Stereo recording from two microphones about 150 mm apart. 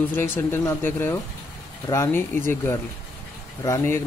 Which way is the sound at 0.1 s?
15° left (ahead or behind).